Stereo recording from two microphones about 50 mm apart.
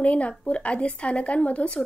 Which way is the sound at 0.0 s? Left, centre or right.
Left.